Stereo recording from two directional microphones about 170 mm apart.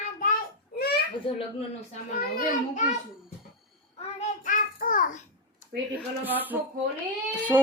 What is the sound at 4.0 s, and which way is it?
Child singing, 45° left (ahead or behind).